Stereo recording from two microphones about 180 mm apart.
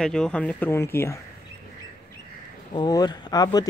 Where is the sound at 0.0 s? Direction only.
5° left (ahead or behind).